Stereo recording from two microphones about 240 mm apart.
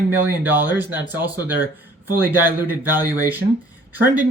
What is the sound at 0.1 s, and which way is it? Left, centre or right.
Speech, centre.